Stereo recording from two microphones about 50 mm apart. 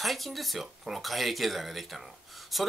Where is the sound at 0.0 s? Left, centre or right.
Centre.